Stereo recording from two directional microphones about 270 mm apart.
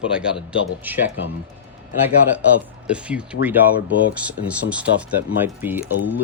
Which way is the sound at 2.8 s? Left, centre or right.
Centre.